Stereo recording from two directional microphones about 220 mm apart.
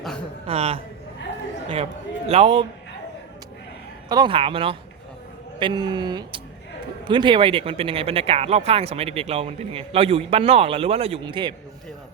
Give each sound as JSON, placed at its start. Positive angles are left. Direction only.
{"t": 0.4, "sound": "a man's voice", "side_deg": -25}
{"t": 4.1, "sound": "speech", "side_deg": -20}